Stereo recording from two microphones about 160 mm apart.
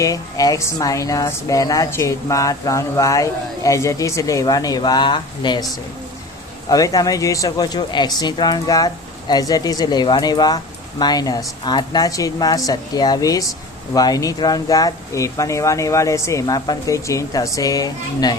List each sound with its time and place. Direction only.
0.0 s speech: 20° left (ahead or behind)
6.7 s speech: 20° left (ahead or behind)